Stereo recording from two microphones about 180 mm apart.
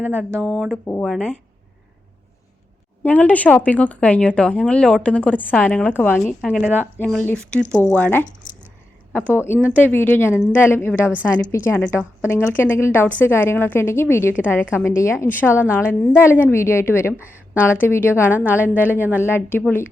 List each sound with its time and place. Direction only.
0.0 s speech: 10° right (ahead or behind)
0.4 s speech: centre (ahead or behind)
3.0 s speech: 10° left (ahead or behind)
6.4 s speech: 5° right (ahead or behind)
7.0 s speech: 5° left (ahead or behind)
8.4 s a sound: 50° left (ahead or behind)
9.1 s speech: 10° left (ahead or behind)
18.6 s speech: 10° right (ahead or behind)
19.2 s speech: 10° left (ahead or behind)